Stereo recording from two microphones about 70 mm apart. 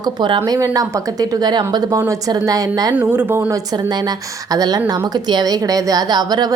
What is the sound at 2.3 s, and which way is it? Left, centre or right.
Speech, right.